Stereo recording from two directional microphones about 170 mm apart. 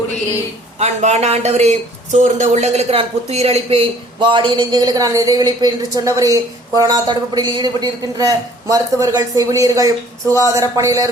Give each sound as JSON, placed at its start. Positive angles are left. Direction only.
{"t": 0.8, "sound": "a woman's voice", "side_deg": -40}